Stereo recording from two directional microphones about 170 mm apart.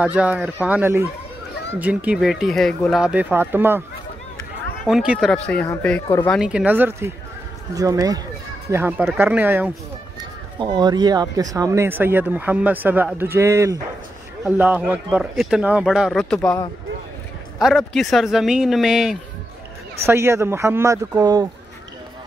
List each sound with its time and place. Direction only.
0.0 s speech: 10° right (ahead or behind)
4.8 s speech: 5° right (ahead or behind)
5.5 s speech: 10° left (ahead or behind)
6.3 s speech: 5° right (ahead or behind)
10.6 s speech: 25° right (ahead or behind); by 16.3 s centre (ahead or behind)
16.3 s speech: 15° left (ahead or behind)
17.6 s speech: centre (ahead or behind)
20.1 s speech: 15° right (ahead or behind)